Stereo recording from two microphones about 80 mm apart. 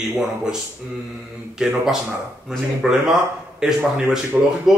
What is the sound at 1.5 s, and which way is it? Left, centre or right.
Speech, centre.